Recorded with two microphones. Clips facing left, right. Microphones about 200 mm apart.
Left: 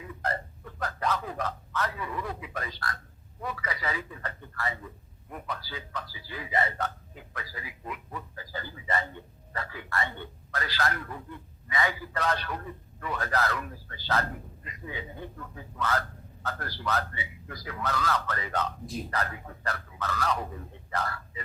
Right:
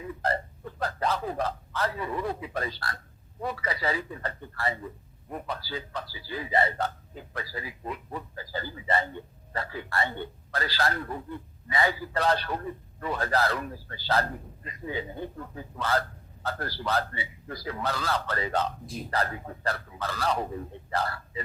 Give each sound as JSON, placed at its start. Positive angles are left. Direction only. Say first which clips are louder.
{"t": 0.2, "sound": "a man's voice", "louder": "right 3 dB", "side_deg": -30}